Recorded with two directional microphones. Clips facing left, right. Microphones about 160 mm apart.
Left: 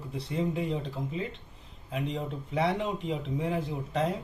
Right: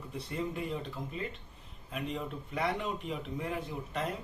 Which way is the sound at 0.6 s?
25° left (ahead or behind).